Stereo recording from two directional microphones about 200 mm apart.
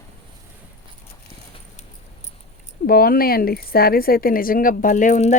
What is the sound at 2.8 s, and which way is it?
A woman's voice, 45° left (ahead or behind).